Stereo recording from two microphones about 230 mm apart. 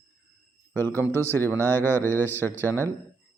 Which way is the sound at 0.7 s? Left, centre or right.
Centre.